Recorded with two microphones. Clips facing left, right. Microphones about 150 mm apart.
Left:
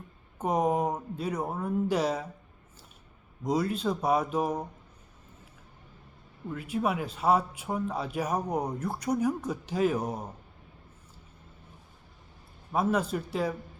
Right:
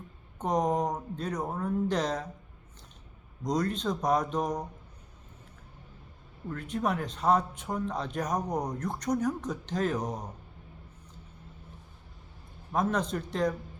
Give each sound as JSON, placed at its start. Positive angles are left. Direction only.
{"t": 0.3, "sound": "speech", "side_deg": 10}
{"t": 3.4, "sound": "speech", "side_deg": 5}
{"t": 6.5, "sound": "speech", "side_deg": 5}
{"t": 12.7, "sound": "speech", "side_deg": 5}